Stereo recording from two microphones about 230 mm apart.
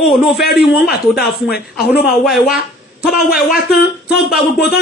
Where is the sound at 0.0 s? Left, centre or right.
Centre.